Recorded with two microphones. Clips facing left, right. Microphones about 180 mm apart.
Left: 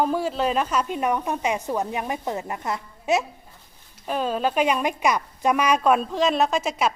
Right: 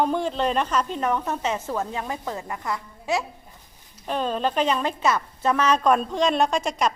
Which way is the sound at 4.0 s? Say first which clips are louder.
Left 1 dB; 5° left (ahead or behind).